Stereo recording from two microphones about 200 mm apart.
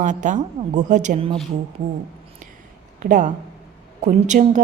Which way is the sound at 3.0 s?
40° right (ahead or behind).